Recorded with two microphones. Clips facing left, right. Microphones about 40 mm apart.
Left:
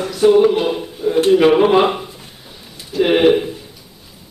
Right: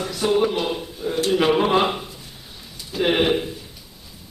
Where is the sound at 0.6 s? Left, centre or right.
Centre.